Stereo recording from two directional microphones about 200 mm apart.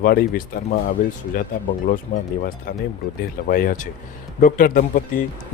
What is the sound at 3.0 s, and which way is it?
Speech, centre (ahead or behind).